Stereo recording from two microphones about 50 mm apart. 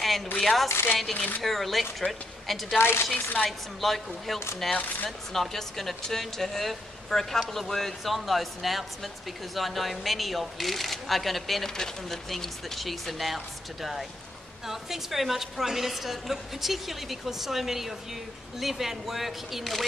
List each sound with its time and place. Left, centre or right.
0.4 s speech: centre
0.7 s speech: left
1.1 s speech: left
1.4 s speech: centre
2.8 s speech: left
3.4 s speech: centre